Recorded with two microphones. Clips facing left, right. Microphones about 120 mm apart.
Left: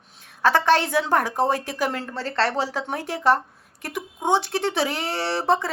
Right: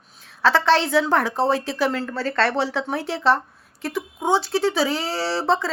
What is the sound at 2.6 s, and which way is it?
Speech, 45° left (ahead or behind).